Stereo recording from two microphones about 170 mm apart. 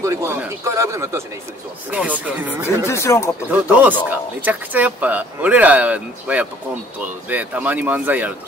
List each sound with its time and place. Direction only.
0.0 s speech: 15° right (ahead or behind)
2.9 s speech: 15° left (ahead or behind)
3.4 s speech: 10° right (ahead or behind)